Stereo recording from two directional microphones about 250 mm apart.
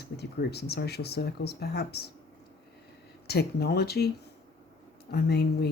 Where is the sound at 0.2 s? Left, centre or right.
Left.